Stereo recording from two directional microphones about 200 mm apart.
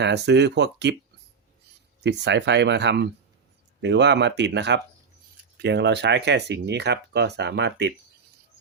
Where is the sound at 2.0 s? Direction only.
60° right (ahead or behind).